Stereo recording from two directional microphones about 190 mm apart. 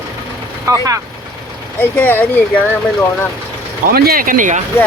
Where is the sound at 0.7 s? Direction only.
15° right (ahead or behind).